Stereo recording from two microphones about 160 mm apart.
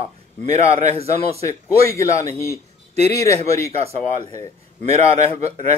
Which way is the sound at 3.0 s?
40° right (ahead or behind).